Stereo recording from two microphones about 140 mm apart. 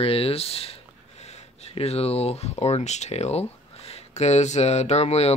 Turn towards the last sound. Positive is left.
turn(degrees=50)  # may be behind; listen again after turning